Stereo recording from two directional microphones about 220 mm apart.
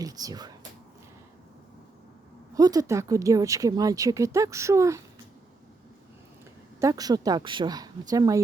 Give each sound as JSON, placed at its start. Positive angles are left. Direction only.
{"t": 0.0, "sound": "speech", "side_deg": -15}
{"t": 2.6, "sound": "speech", "side_deg": -15}
{"t": 6.7, "sound": "speech", "side_deg": -15}